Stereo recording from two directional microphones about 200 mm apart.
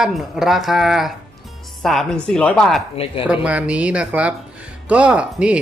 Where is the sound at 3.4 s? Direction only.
5° right (ahead or behind).